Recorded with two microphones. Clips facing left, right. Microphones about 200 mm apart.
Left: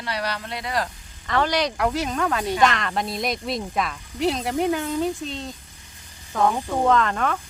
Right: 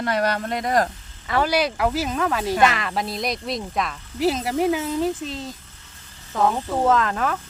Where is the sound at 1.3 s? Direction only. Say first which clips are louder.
Right 1 dB; 10° right (ahead or behind).